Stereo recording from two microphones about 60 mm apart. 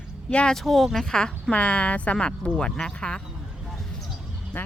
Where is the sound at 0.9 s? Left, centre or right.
Centre.